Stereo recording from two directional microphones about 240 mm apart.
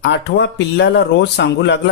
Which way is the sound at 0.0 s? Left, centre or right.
Left.